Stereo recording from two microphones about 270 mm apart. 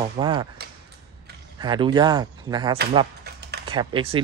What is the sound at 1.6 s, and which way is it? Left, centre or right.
Speech, centre.